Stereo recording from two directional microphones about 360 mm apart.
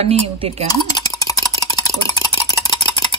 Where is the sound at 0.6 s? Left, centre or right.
Centre.